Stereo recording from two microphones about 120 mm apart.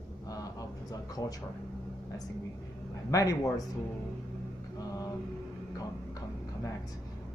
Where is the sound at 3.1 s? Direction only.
30° left (ahead or behind).